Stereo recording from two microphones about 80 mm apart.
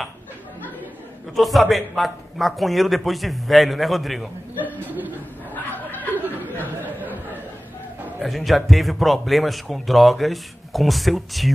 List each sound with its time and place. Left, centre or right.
1.3 s a man's voice: centre
4.6 s chuckle: right
5.5 s snicker: left
5.9 s a sound: right
8.2 s a man's voice: centre